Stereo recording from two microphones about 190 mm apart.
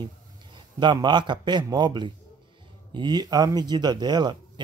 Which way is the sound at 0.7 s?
25° right (ahead or behind).